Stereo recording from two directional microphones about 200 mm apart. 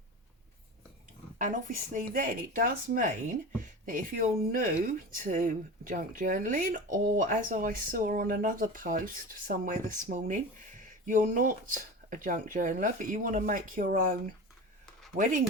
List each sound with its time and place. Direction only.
1.4 s speech: 40° right (ahead or behind)